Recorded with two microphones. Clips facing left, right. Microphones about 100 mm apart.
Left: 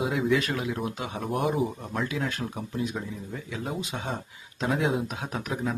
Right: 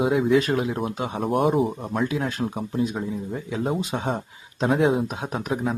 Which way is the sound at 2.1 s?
30° right (ahead or behind).